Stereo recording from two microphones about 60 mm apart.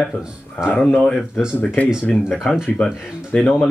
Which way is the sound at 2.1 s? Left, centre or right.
Centre.